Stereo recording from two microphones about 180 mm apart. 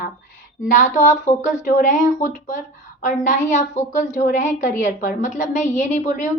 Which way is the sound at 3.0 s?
45° left (ahead or behind).